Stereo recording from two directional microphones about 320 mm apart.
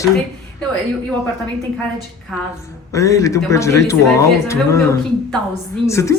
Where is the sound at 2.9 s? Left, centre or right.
Centre.